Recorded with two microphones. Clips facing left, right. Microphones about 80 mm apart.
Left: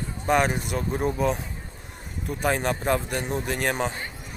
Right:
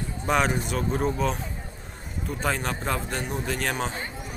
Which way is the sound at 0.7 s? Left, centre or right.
Centre.